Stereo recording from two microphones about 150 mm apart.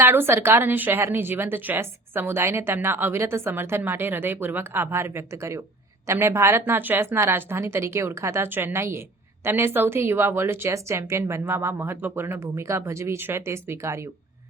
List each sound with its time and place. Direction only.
0.0 s a woman's voice: 15° right (ahead or behind)